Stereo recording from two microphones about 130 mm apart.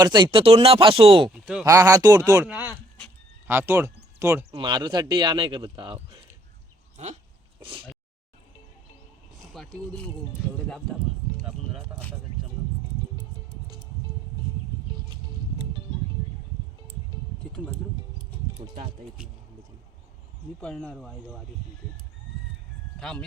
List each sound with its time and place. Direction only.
0.0 s speech: 35° right (ahead or behind)
1.3 s speech: 5° right (ahead or behind)
1.6 s speech: 25° right (ahead or behind)
4.5 s speech: 35° right (ahead or behind)
6.9 s goat: 60° right (ahead or behind)
7.6 s speech: 40° right (ahead or behind)
9.5 s a sound: centre (ahead or behind)
20.6 s speech: 5° left (ahead or behind)
23.0 s speech: 5° left (ahead or behind)